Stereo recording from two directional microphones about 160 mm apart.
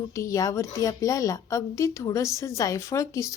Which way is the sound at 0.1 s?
20° left (ahead or behind).